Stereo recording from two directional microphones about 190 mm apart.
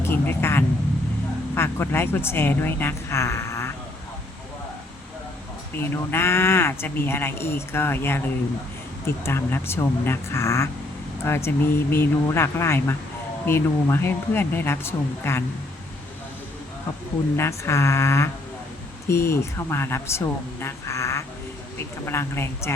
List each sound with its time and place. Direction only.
0.0 s speech: 10° left (ahead or behind)
5.7 s speech: 10° left (ahead or behind)
17.3 s speech: 15° left (ahead or behind)